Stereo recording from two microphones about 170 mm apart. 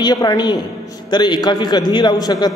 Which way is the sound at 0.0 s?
20° left (ahead or behind).